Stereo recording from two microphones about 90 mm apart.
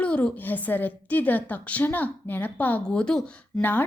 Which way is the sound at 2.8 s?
10° left (ahead or behind).